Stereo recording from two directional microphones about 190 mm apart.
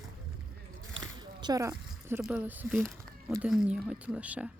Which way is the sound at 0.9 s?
20° right (ahead or behind).